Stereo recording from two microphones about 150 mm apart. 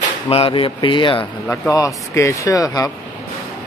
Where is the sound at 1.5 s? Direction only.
20° left (ahead or behind).